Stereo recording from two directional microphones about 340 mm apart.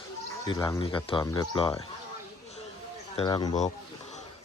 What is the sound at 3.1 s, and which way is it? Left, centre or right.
Speech, centre.